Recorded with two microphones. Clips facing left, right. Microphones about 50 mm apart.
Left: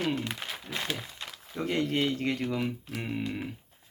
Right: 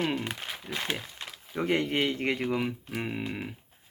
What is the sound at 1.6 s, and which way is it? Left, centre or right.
Speech, right.